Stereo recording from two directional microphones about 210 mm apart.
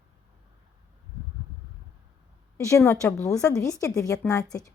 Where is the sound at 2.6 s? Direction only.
15° left (ahead or behind).